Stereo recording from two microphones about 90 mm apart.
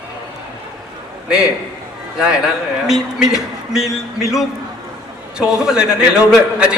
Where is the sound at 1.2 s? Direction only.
10° right (ahead or behind).